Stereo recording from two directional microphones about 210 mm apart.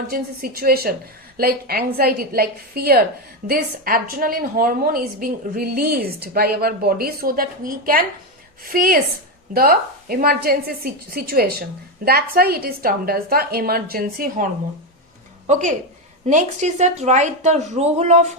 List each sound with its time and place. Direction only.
0.1 s a woman's voice: 45° right (ahead or behind)